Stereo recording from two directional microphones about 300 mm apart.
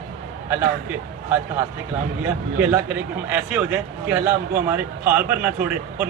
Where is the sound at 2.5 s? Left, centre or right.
Centre.